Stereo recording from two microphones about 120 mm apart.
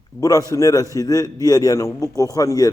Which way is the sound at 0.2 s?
30° left (ahead or behind).